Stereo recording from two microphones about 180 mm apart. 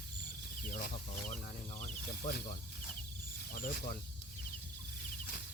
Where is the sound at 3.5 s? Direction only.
50° left (ahead or behind).